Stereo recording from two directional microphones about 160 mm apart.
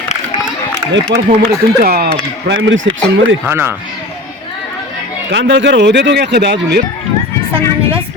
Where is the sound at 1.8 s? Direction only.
75° right (ahead or behind).